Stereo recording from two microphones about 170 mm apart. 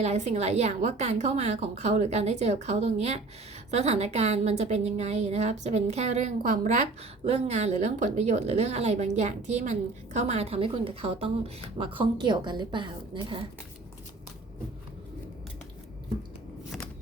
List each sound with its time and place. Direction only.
0.0 s a woman's voice: 40° right (ahead or behind)